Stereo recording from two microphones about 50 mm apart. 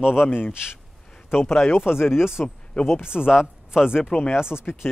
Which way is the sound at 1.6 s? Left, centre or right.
Left.